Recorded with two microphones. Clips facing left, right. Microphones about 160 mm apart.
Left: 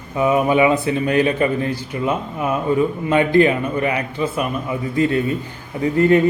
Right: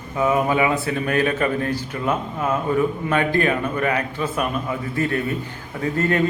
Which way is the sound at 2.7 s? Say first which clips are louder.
Left 5 dB; 20° left (ahead or behind).